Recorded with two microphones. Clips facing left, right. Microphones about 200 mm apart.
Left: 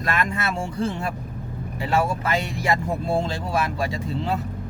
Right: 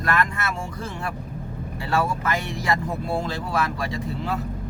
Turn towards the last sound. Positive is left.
turn(degrees=25)  # may be behind; listen again after turning